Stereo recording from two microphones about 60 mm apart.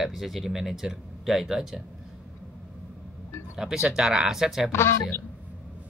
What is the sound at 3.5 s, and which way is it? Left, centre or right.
Speech, centre.